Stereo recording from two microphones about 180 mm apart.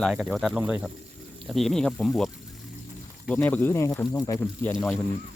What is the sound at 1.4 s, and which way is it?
Speech, centre (ahead or behind).